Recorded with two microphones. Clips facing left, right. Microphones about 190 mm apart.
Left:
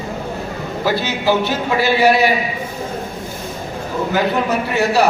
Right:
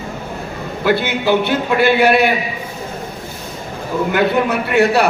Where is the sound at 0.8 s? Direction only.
60° right (ahead or behind).